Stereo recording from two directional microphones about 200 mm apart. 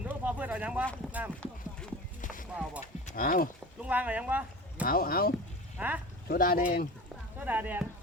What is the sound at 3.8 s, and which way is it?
Speech, 5° right (ahead or behind).